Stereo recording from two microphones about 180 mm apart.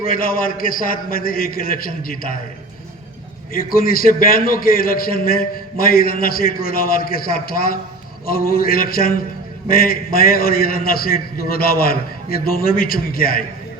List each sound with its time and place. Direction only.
0.0 s a man's voice: 50° left (ahead or behind)
3.5 s a man's voice: 55° left (ahead or behind)